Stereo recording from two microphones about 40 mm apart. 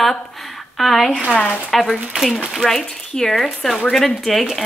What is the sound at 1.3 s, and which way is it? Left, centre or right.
Speech, left.